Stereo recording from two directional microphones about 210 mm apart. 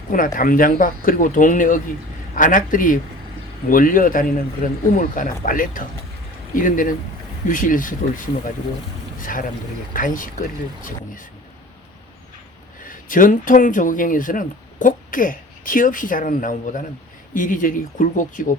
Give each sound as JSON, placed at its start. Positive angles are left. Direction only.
{"t": 0.1, "sound": "speech", "side_deg": 40}
{"t": 9.2, "sound": "speech", "side_deg": 40}
{"t": 12.8, "sound": "speech", "side_deg": 40}